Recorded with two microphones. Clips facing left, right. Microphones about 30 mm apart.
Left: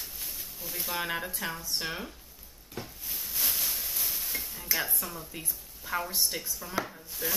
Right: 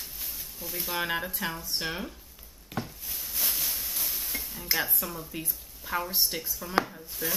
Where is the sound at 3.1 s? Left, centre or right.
Centre.